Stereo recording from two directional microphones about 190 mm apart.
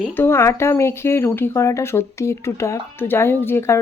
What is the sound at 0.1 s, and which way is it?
Speech, 10° left (ahead or behind).